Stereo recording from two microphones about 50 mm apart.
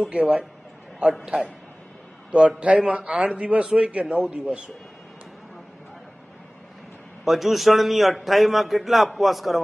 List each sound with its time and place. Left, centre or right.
0.1 s a man's voice: centre
7.2 s a man's voice: centre